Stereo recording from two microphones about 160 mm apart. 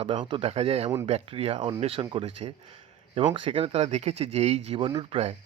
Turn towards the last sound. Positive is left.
turn(degrees=-30)  # may be behind; listen again after turning